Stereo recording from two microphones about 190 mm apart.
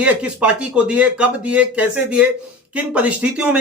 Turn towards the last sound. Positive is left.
turn(degrees=-5)  # may be behind; listen again after turning